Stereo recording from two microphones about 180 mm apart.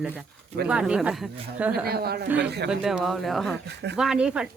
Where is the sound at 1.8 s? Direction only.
60° right (ahead or behind).